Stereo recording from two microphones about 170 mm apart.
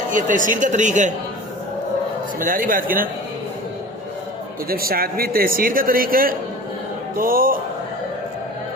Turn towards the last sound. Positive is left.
turn(degrees=-55)  # may be behind; listen again after turning